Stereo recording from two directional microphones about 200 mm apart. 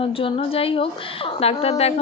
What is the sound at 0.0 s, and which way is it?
A woman's voice, 30° left (ahead or behind).